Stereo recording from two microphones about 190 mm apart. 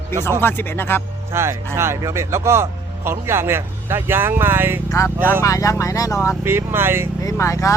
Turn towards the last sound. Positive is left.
turn(degrees=15)  # may be behind; listen again after turning